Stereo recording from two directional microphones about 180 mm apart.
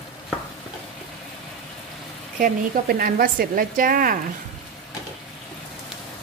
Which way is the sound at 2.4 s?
55° right (ahead or behind).